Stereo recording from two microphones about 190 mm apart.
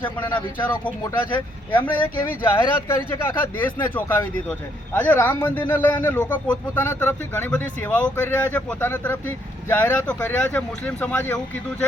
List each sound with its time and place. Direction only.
0.2 s speech: 25° left (ahead or behind)
2.4 s a man's voice: 10° left (ahead or behind)